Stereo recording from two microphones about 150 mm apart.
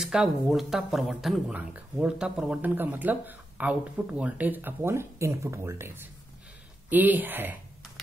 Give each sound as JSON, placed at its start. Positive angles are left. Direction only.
{"t": 0.0, "sound": "speech", "side_deg": 0}